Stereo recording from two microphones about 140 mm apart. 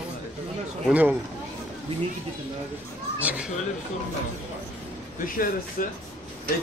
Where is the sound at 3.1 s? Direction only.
10° right (ahead or behind).